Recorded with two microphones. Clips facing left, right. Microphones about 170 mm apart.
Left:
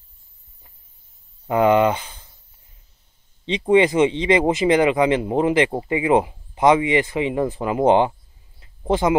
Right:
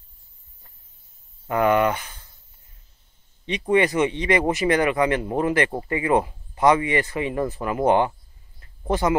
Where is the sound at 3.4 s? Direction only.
20° left (ahead or behind).